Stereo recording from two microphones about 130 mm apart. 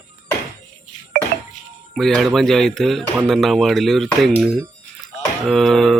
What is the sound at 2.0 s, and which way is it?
Speech, 5° left (ahead or behind).